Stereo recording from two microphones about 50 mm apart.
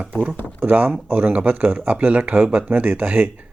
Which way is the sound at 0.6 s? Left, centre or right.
Right.